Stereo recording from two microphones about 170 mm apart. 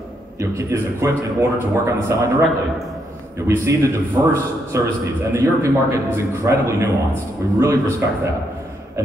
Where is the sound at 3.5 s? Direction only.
15° right (ahead or behind).